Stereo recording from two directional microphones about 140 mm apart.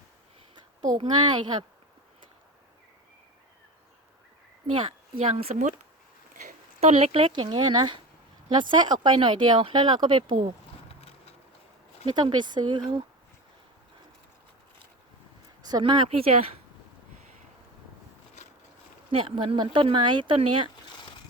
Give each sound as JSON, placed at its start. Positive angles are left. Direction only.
{"t": 0.9, "sound": "speech", "side_deg": -30}
{"t": 4.6, "sound": "speech", "side_deg": -35}
{"t": 12.1, "sound": "speech", "side_deg": -30}
{"t": 15.6, "sound": "speech", "side_deg": -30}
{"t": 19.1, "sound": "speech", "side_deg": -40}